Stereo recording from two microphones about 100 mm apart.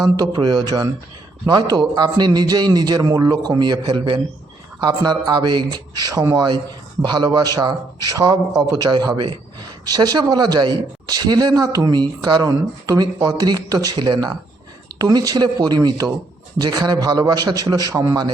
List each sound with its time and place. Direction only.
0.0 s speech: 45° right (ahead or behind)